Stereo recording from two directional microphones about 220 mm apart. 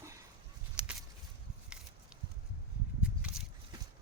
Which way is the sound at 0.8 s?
20° right (ahead or behind).